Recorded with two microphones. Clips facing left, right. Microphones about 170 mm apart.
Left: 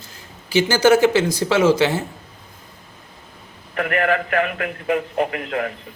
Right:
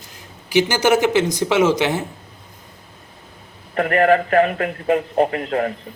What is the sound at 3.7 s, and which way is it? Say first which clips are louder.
Speech: right 5 dB; 35° right (ahead or behind).